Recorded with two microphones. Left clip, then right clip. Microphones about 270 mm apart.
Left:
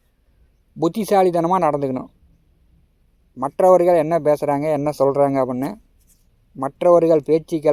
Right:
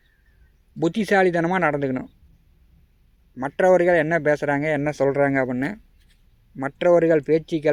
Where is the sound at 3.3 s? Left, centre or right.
Centre.